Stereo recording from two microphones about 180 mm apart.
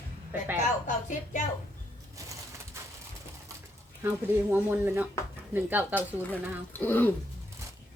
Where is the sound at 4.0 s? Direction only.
10° right (ahead or behind).